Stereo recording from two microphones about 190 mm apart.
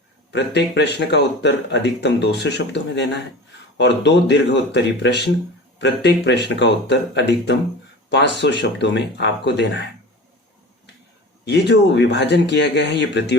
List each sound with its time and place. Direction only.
0.3 s speech: 65° left (ahead or behind)
11.4 s speech: 65° left (ahead or behind)